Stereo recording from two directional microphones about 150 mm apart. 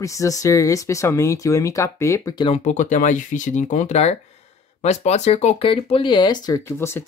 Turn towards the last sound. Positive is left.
turn(degrees=15)  # may be behind; listen again after turning